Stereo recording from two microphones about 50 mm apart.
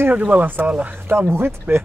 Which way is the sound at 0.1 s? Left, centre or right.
Right.